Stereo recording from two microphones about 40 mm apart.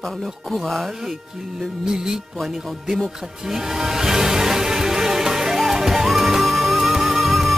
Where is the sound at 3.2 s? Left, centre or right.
Centre.